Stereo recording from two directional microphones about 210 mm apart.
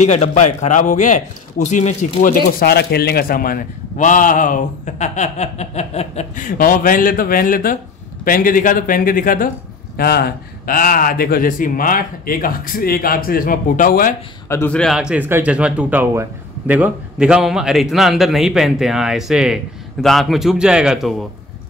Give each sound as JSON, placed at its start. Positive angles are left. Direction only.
{"t": 0.0, "sound": "speech", "side_deg": 35}
{"t": 14.5, "sound": "speech", "side_deg": 10}